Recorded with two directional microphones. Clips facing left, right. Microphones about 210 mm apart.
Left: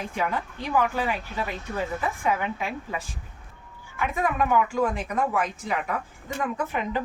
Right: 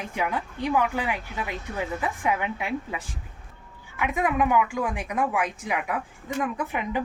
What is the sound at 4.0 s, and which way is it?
Speech, 15° right (ahead or behind).